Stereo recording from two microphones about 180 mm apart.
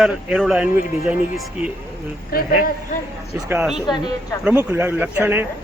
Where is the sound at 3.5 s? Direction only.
Centre (ahead or behind).